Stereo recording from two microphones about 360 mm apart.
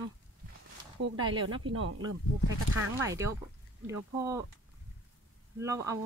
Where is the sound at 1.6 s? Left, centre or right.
Right.